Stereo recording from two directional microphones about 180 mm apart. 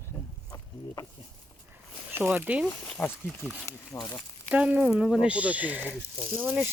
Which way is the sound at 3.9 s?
20° left (ahead or behind).